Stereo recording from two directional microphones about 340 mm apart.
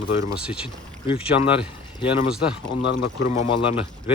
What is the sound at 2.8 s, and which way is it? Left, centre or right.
Speech, left.